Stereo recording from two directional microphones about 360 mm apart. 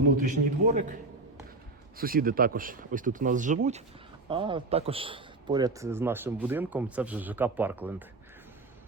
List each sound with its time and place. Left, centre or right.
0.3 s speech: right
2.0 s a man's voice: right; by 8.0 s centre